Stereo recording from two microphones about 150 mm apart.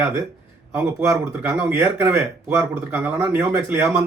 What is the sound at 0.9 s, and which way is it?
A man's voice, 20° right (ahead or behind).